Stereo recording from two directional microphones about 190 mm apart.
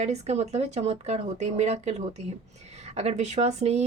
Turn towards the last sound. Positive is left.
turn(degrees=-35)  # may be behind; listen again after turning